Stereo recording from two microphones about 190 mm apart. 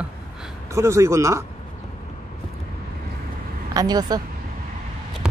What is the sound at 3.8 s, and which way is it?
Speech, 20° right (ahead or behind).